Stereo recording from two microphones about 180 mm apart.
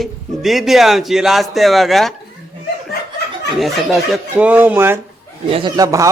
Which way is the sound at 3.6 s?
Centre (ahead or behind).